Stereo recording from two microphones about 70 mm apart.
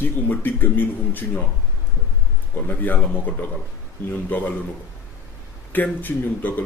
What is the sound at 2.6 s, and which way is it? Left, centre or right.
Speech, left.